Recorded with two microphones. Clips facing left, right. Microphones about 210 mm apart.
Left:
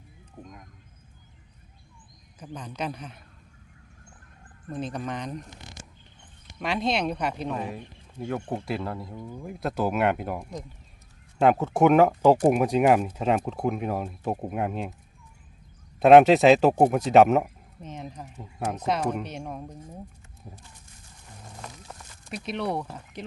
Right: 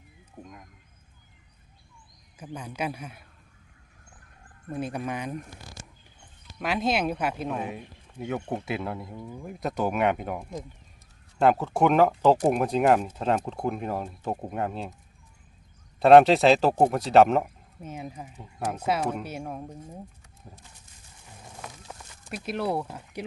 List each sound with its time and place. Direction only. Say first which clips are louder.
2.4 s speech: right 1 dB; 10° right (ahead or behind)
4.7 s speech: right 1 dB; 10° right (ahead or behind)
5.5 s speech: even; 20° left (ahead or behind)
6.6 s speech: even; centre (ahead or behind)
16.0 s speech: left 1 dB; 5° left (ahead or behind)
17.8 s speech: right 1 dB; 5° right (ahead or behind)
21.2 s a sound: even; 5° right (ahead or behind)
22.3 s speech: right 1 dB; 5° right (ahead or behind)